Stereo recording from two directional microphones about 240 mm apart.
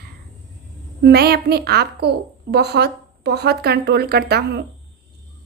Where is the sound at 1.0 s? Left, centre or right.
Right.